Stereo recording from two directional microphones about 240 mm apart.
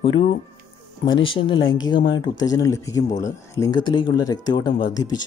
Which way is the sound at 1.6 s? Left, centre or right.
Left.